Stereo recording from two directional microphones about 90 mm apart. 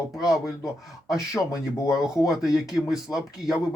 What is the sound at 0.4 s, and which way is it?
Speech, 35° left (ahead or behind).